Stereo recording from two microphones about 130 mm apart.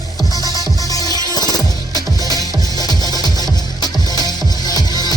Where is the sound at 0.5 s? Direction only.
30° left (ahead or behind).